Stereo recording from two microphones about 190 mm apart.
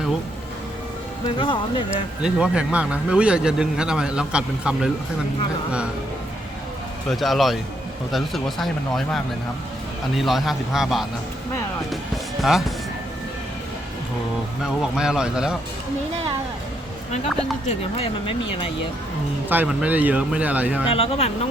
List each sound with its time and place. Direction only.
1.4 s speech: 25° left (ahead or behind)
2.2 s speech: 5° right (ahead or behind)
7.1 s speech: centre (ahead or behind)
14.6 s speech: 5° right (ahead or behind)
17.7 s speech: 30° left (ahead or behind)
19.5 s speech: 10° right (ahead or behind)
20.9 s speech: 30° left (ahead or behind)